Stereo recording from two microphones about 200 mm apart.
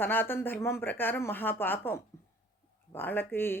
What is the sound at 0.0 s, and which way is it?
Speech, 10° left (ahead or behind).